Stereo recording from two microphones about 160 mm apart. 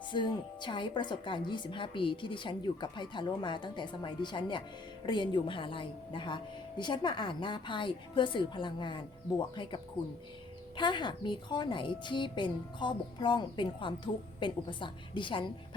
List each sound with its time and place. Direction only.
0.1 s a woman's voice: 30° left (ahead or behind)